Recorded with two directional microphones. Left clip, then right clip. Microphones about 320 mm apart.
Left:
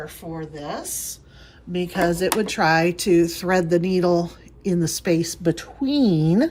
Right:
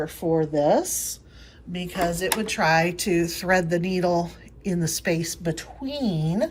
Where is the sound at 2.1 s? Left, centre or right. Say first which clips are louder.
Left 4 dB; centre.